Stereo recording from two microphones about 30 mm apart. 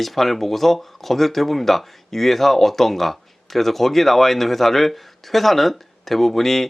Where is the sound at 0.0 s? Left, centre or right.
Centre.